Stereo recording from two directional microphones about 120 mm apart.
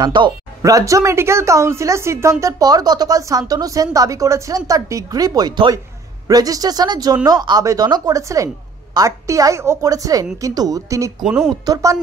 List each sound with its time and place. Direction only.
0.0 s speech: 40° right (ahead or behind)
0.6 s a woman's voice: 25° right (ahead or behind)
2.4 s a woman's voice: 30° right (ahead or behind)
11.2 s speech: 5° right (ahead or behind)
11.6 s a woman's voice: 30° right (ahead or behind)